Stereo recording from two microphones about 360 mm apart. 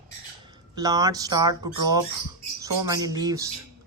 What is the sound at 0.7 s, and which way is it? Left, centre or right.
Speech, centre.